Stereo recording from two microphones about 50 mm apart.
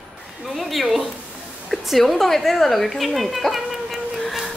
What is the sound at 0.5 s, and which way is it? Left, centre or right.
A woman's voice, centre.